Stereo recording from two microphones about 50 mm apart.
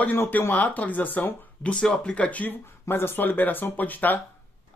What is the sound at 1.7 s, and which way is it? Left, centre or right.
Speech, centre.